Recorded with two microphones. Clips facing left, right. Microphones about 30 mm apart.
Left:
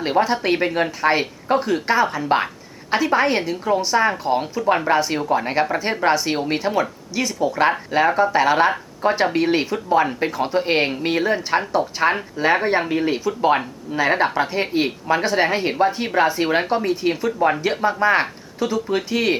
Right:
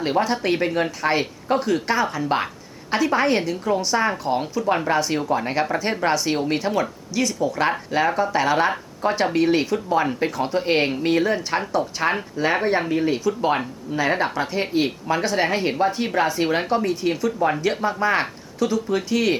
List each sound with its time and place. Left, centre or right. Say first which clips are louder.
0.0 s a woman's voice: left 2 dB; centre